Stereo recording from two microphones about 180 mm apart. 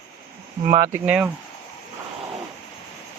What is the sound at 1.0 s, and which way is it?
Speech, 5° right (ahead or behind).